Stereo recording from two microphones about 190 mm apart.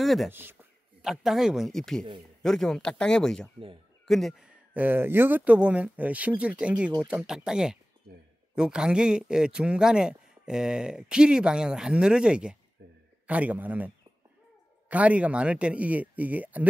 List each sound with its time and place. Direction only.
0.0 s speech: centre (ahead or behind)
0.3 s a man's voice: 10° right (ahead or behind)
12.8 s a sound: 60° right (ahead or behind)
13.3 s speech: 5° right (ahead or behind)